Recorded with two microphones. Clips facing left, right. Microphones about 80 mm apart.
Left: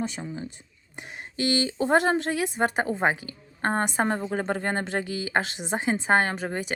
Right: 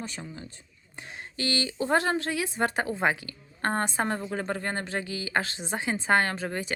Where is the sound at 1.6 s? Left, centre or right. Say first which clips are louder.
Left 3 dB; left.